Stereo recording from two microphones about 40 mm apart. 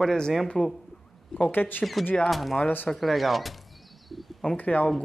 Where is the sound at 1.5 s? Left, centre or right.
Left.